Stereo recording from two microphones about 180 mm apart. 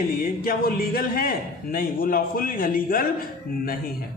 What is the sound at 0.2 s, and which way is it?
Speech, 55° left (ahead or behind).